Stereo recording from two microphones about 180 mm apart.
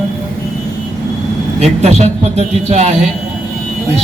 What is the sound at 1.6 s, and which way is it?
A man's voice, 35° right (ahead or behind).